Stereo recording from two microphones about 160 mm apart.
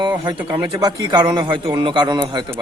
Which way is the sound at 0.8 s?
25° right (ahead or behind).